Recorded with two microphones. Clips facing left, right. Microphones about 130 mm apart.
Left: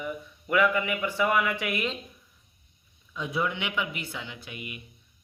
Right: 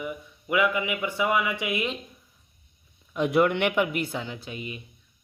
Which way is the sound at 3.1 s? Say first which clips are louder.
Right 8 dB; 70° right (ahead or behind).